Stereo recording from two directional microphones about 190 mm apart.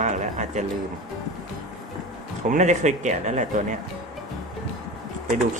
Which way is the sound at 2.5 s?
40° right (ahead or behind).